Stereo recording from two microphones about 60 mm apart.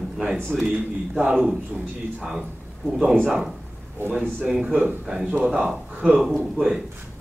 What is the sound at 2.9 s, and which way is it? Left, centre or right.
Speech, centre.